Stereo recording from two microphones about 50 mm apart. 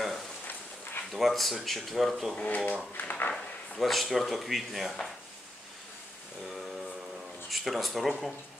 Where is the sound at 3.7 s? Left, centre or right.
Centre.